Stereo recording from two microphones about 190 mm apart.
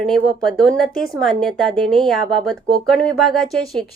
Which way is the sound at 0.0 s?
Centre (ahead or behind).